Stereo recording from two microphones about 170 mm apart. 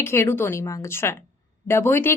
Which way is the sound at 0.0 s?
15° left (ahead or behind).